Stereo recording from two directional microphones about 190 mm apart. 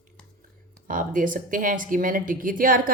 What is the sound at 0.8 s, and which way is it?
Speech, 45° right (ahead or behind).